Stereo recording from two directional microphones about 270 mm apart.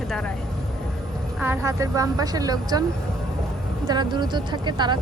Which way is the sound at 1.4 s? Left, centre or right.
Centre.